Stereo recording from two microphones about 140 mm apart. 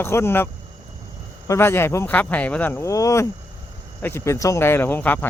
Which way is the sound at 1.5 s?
15° left (ahead or behind).